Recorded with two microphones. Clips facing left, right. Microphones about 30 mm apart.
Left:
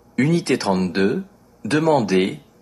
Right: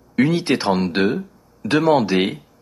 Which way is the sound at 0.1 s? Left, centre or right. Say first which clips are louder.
Right 1 dB; right.